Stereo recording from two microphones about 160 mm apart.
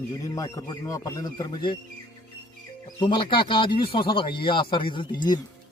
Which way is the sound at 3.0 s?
30° left (ahead or behind).